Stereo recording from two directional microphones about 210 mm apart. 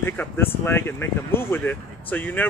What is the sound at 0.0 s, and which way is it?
Speech, 10° left (ahead or behind).